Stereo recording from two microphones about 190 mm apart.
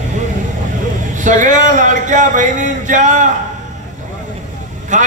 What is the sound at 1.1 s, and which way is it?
A man's voice, 40° right (ahead or behind).